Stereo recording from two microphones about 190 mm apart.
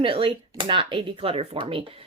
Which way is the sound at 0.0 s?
25° right (ahead or behind).